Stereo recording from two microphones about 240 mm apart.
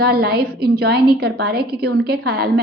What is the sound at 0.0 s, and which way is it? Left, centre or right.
Speech, right.